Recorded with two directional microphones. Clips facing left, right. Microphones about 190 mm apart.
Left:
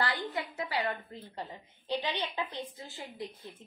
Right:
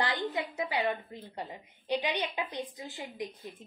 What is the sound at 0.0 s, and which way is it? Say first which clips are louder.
A woman's voice: right 2 dB; 20° right (ahead or behind).